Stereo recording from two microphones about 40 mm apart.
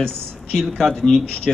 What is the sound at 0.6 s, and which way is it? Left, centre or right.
Speech, centre.